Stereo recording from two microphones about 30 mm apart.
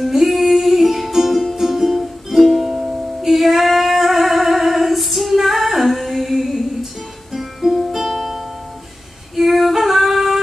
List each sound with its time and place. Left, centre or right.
0.0 s music: centre
3.2 s female singing: centre
7.3 s music: centre
9.3 s female singing: centre